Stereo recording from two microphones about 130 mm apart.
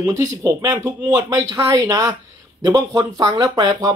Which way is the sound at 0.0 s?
25° right (ahead or behind).